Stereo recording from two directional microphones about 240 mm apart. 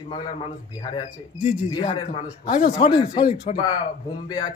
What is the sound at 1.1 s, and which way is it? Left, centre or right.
Speech, centre.